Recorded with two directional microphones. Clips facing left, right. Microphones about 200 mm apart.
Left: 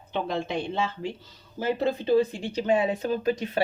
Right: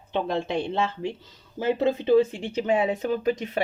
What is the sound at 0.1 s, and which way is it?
Speech, 25° right (ahead or behind).